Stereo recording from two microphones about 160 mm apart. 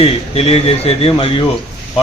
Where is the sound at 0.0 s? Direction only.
35° left (ahead or behind).